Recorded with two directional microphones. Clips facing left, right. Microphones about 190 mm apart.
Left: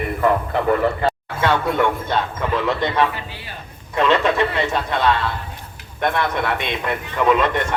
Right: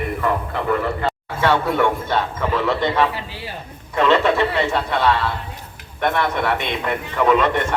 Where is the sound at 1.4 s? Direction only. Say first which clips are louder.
Right 1 dB; 15° left (ahead or behind).